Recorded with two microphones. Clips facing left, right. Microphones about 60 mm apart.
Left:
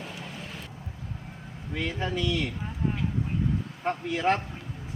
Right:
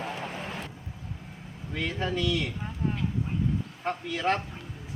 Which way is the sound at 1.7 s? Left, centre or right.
Centre.